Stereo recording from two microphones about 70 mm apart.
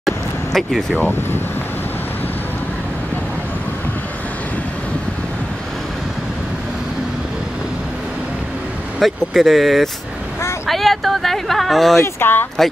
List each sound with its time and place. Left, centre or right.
0.0 s a sound: centre
9.0 s speech: centre
12.0 s speech: left